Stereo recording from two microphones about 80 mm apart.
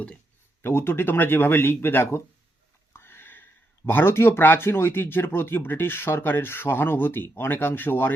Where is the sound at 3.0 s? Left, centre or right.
Left.